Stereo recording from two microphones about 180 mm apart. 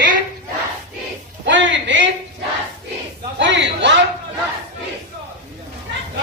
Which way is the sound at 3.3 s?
80° right.